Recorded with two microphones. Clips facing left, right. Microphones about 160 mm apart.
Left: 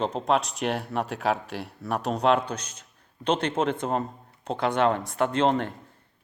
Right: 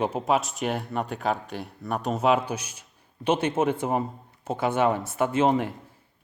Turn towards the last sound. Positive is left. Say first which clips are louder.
# right 1 dB
turn(degrees=-5)  # may be behind; listen again after turning